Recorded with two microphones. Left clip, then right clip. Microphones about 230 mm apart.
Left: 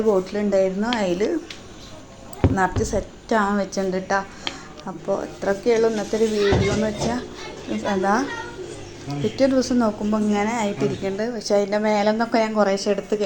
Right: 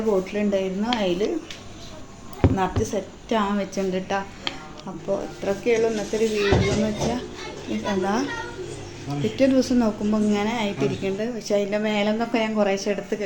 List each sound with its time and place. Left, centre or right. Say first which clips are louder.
0.3 s a woman's voice: left 4 dB; centre
0.9 s a child's voice: left 1 dB; centre
2.4 s a sound: even; centre
2.8 s a woman's voice: left 2 dB; centre
5.9 s a child's voice: left 2 dB; centre